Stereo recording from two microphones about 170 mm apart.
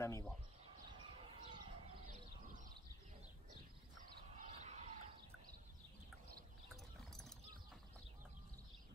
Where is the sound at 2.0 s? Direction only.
50° right (ahead or behind).